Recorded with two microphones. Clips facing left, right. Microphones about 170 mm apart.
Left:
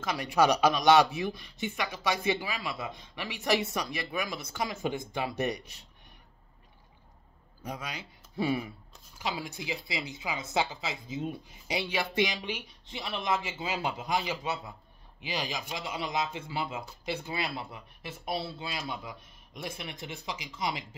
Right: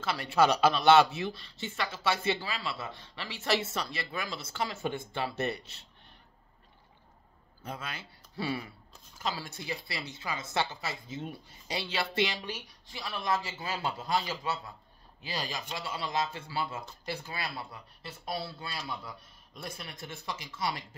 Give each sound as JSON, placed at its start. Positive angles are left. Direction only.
{"t": 0.0, "sound": "a man's voice", "side_deg": 15}
{"t": 7.6, "sound": "a man's voice", "side_deg": 15}